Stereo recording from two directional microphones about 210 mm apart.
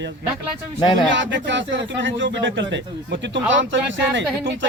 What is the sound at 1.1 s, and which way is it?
Speech, 60° right (ahead or behind).